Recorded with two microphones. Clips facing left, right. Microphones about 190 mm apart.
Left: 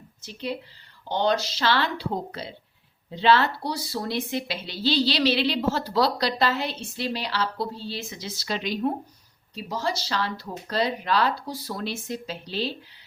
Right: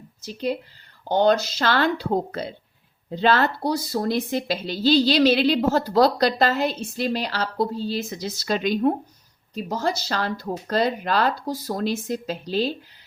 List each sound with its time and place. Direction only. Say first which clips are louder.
0.2 s speech: right 5 dB; 40° right (ahead or behind)